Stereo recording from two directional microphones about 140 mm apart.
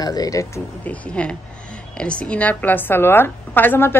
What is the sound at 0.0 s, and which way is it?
Speech, 25° left (ahead or behind).